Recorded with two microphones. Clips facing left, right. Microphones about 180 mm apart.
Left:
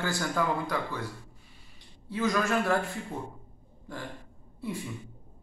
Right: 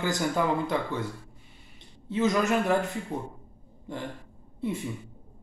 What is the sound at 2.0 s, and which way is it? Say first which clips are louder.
Speech: right 3 dB; 20° right (ahead or behind).